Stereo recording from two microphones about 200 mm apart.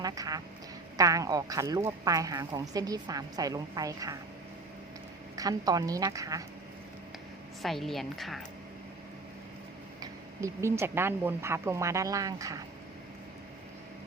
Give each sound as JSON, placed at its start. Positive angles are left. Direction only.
{"t": 0.0, "sound": "a woman's voice", "side_deg": -20}
{"t": 5.4, "sound": "a woman's voice", "side_deg": -20}
{"t": 7.6, "sound": "a woman's voice", "side_deg": 0}
{"t": 10.0, "sound": "a woman's voice", "side_deg": -15}